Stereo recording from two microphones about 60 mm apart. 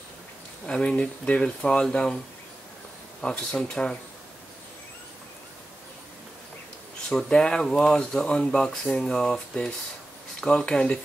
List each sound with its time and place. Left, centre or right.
0.7 s speech: centre
3.2 s speech: centre
7.1 s speech: centre